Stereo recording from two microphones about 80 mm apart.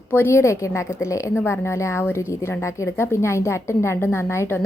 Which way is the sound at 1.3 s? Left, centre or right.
Left.